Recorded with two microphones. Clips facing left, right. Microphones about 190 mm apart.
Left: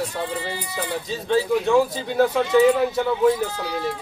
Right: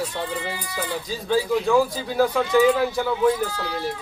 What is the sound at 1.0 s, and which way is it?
Speech, 25° left (ahead or behind).